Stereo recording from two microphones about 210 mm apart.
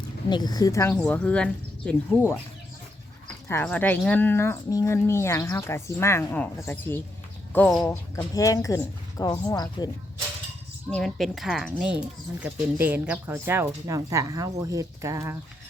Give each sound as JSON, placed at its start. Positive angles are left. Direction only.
{"t": 0.3, "sound": "speech", "side_deg": 20}
{"t": 3.5, "sound": "speech", "side_deg": 10}
{"t": 8.1, "sound": "speech", "side_deg": 15}
{"t": 10.8, "sound": "speech", "side_deg": 0}